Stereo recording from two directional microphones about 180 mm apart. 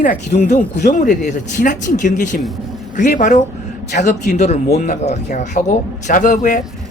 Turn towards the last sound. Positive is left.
turn(degrees=50)  # may be behind; listen again after turning